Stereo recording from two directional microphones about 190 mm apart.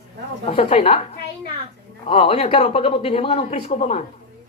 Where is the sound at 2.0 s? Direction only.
30° left (ahead or behind).